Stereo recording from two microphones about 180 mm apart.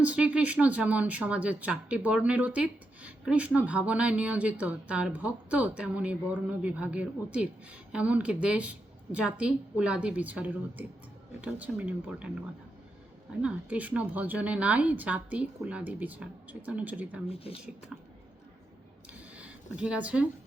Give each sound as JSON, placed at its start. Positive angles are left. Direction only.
{"t": 0.0, "sound": "speech", "side_deg": -5}
{"t": 13.4, "sound": "speech", "side_deg": -10}
{"t": 17.2, "sound": "speech", "side_deg": 30}
{"t": 19.3, "sound": "a sound", "side_deg": -10}